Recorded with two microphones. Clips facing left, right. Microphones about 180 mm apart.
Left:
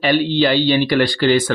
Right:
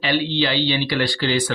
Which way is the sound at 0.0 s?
50° left (ahead or behind).